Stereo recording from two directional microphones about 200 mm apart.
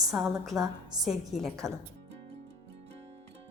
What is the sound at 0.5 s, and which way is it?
Speech, 20° right (ahead or behind).